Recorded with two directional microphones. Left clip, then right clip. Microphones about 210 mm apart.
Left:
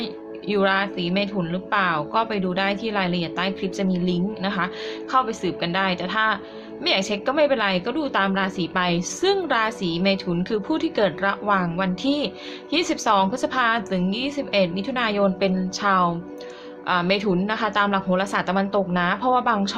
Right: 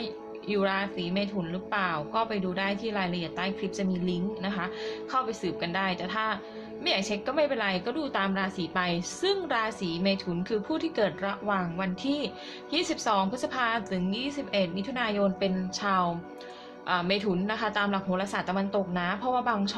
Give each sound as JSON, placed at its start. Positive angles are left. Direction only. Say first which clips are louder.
{"t": 0.0, "sound": "a woman's voice", "louder": "left 6 dB", "side_deg": 15}